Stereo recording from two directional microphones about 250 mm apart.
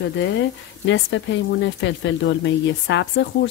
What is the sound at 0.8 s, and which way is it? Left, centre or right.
Speech, left.